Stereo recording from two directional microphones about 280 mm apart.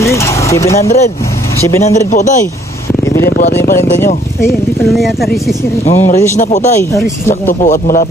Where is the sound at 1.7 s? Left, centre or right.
Centre.